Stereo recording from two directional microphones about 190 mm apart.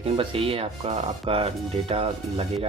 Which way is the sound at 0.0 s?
25° right (ahead or behind).